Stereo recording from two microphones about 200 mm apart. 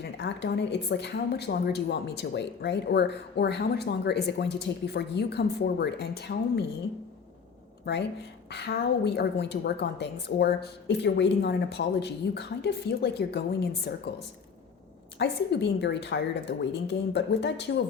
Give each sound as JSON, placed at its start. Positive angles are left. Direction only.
{"t": 0.2, "sound": "a woman's voice", "side_deg": 60}
{"t": 8.4, "sound": "a woman's voice", "side_deg": 55}